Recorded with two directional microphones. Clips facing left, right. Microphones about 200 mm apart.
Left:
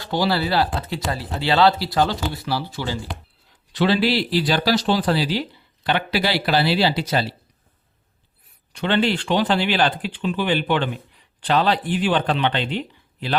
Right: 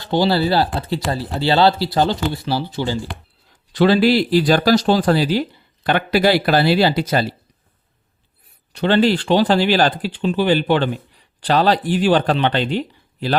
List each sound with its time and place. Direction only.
0.1 s speech: 25° right (ahead or behind)
3.7 s speech: 45° right (ahead or behind)
8.7 s speech: 35° right (ahead or behind)